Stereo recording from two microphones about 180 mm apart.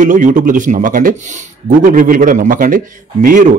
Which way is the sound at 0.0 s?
45° right (ahead or behind).